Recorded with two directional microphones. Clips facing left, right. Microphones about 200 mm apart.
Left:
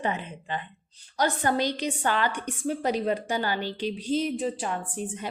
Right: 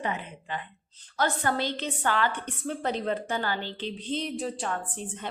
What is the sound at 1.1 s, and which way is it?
A woman's voice, 15° left (ahead or behind).